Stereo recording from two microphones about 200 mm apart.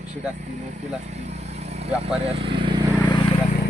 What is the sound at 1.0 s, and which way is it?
Vehicle, 35° right (ahead or behind).